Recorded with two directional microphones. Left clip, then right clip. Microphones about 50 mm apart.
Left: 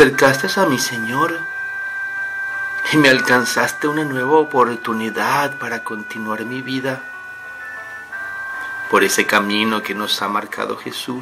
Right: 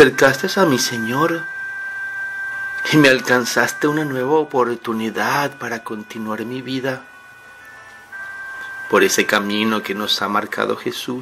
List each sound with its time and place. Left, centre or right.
0.1 s speech: right
2.8 s speech: right
8.9 s speech: right